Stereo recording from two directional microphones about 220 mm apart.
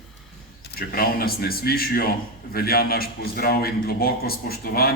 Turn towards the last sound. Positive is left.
turn(degrees=45)  # may be behind; listen again after turning